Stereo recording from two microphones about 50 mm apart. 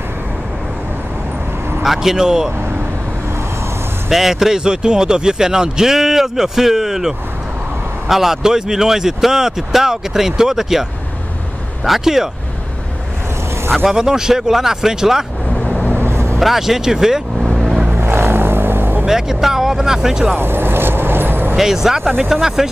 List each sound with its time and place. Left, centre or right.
1.8 s speech: centre
4.1 s speech: centre
13.8 s speech: centre
15.6 s vehicle: left
15.9 s vehicle: right
16.3 s speech: centre
17.6 s vehicle: centre
17.9 s vehicle: right
19.0 s speech: centre
20.3 s vehicle: right
21.5 s speech: centre